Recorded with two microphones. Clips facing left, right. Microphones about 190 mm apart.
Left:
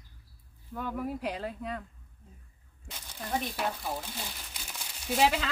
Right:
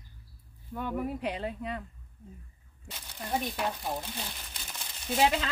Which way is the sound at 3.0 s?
5° right (ahead or behind).